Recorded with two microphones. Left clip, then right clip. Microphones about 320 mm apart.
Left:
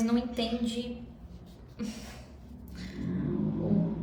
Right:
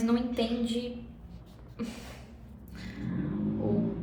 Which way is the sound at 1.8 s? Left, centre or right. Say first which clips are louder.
Right 1 dB; centre.